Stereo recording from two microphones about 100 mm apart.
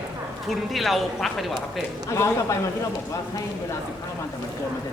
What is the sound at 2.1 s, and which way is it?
Speech, 30° left (ahead or behind).